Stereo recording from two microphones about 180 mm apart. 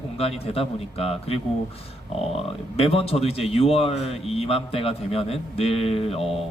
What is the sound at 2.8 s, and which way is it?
Speech, 30° left (ahead or behind).